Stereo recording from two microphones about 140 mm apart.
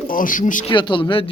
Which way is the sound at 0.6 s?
35° left (ahead or behind).